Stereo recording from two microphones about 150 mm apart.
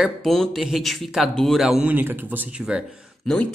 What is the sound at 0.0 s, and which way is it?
Speech, centre (ahead or behind).